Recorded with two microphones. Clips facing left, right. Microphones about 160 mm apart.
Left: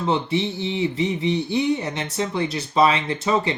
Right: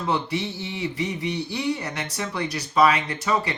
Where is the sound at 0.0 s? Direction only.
25° left (ahead or behind).